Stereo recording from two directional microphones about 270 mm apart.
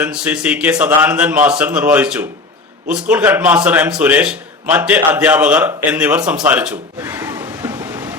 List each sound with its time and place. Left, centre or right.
0.0 s a man's voice: centre